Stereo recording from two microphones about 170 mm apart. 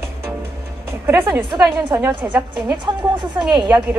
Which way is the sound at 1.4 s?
25° right (ahead or behind).